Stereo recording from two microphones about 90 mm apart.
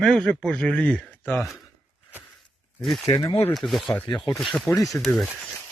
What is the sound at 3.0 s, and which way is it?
Speech, 40° left (ahead or behind).